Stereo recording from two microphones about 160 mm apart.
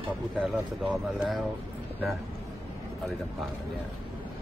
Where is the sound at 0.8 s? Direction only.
Centre (ahead or behind).